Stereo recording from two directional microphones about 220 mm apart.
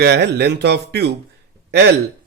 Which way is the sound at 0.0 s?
50° right (ahead or behind).